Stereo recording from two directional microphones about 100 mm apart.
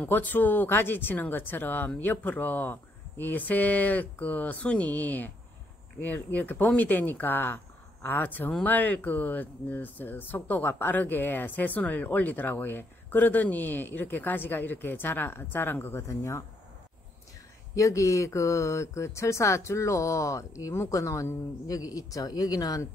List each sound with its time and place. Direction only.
0.0 s speech: 15° left (ahead or behind)
17.7 s speech: 30° left (ahead or behind)